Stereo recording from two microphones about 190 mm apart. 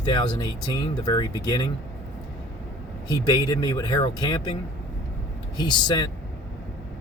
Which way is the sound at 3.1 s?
20° left (ahead or behind).